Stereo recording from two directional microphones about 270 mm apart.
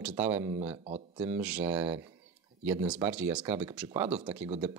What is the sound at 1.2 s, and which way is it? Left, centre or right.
Speech, centre.